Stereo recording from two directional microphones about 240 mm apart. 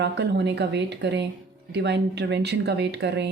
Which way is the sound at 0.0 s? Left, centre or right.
Right.